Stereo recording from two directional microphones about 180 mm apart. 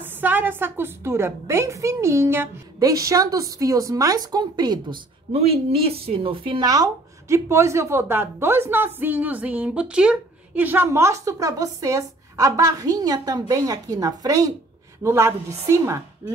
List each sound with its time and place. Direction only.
0.0 s a woman's voice: 10° right (ahead or behind)